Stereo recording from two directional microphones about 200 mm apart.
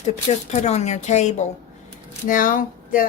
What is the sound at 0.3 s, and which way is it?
Speech, 35° left (ahead or behind).